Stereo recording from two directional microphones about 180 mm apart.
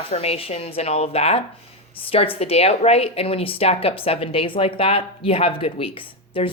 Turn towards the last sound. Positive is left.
turn(degrees=30)  # may be behind; listen again after turning